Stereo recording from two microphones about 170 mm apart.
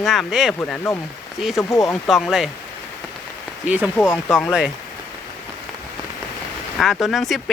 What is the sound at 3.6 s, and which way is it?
Speech, 10° right (ahead or behind).